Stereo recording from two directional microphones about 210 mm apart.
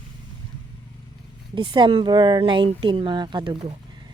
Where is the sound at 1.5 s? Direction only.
20° right (ahead or behind).